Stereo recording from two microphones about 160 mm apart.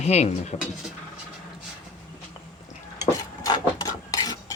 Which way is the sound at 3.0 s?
20° left (ahead or behind).